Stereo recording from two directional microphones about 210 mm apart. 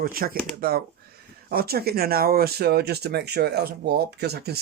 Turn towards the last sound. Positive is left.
turn(degrees=-50)  # may be behind; listen again after turning